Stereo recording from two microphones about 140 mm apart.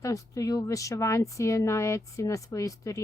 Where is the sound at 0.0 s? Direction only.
25° left (ahead or behind).